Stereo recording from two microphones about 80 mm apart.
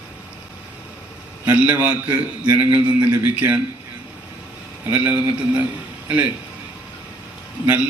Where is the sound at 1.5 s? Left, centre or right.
Right.